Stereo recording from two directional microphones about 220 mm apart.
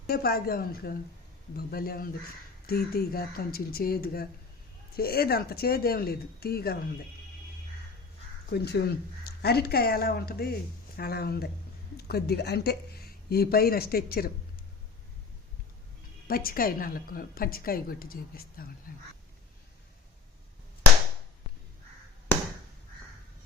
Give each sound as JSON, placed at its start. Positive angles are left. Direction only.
{"t": 0.1, "sound": "speech", "side_deg": 45}
{"t": 8.4, "sound": "speech", "side_deg": 45}
{"t": 16.2, "sound": "a woman's voice", "side_deg": 40}